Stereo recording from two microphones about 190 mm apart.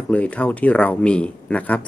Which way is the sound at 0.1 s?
5° left (ahead or behind).